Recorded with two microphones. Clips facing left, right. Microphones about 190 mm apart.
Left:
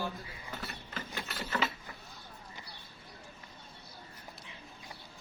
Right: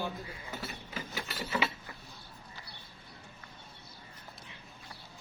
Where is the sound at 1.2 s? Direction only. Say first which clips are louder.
Right 1 dB; 10° right (ahead or behind).